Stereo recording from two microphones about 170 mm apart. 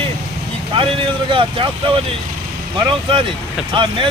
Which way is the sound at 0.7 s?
30° right (ahead or behind).